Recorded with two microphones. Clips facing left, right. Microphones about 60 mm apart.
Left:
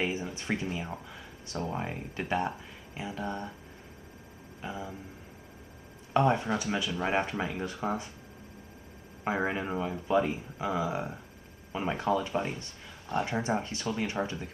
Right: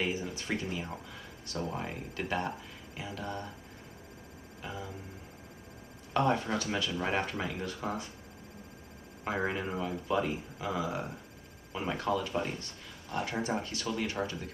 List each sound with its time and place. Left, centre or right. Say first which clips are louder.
0.0 s speech: left 1 dB; left
4.6 s speech: left 3 dB; left
6.1 s speech: left 3 dB; left
9.2 s speech: left 2 dB; centre